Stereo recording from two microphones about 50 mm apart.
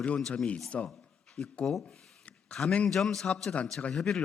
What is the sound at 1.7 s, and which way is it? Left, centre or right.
Speech, centre.